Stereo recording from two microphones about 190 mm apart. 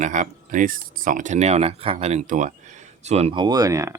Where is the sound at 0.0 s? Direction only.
40° right (ahead or behind).